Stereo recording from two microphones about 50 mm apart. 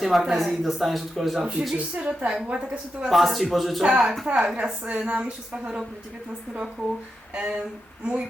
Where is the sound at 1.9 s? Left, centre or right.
Right.